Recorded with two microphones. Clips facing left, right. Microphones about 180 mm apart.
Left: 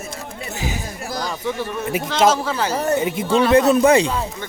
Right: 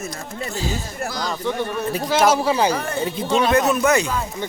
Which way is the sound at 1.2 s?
5° left (ahead or behind).